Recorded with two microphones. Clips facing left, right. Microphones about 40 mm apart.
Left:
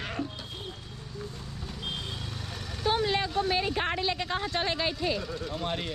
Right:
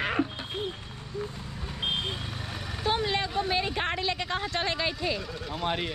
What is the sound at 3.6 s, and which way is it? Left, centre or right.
Speech, right.